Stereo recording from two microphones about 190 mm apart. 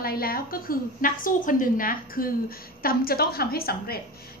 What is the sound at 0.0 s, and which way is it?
A woman's voice, 50° left (ahead or behind).